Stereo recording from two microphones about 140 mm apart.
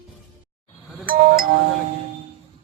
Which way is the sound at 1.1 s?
90° right.